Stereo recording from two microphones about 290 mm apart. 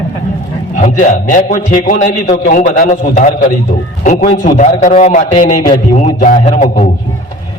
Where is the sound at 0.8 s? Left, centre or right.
Left.